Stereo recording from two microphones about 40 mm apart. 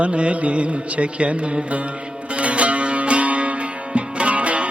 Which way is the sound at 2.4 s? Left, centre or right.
Right.